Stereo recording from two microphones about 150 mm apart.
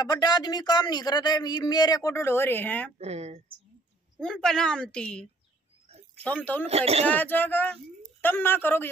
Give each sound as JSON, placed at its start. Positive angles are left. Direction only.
{"t": 0.0, "sound": "speech", "side_deg": 25}
{"t": 3.0, "sound": "speech", "side_deg": -45}
{"t": 4.2, "sound": "a woman's voice", "side_deg": 5}
{"t": 5.9, "sound": "a sound", "side_deg": -45}
{"t": 6.2, "sound": "speech", "side_deg": 10}
{"t": 6.7, "sound": "speech", "side_deg": -45}
{"t": 7.1, "sound": "speech", "side_deg": 10}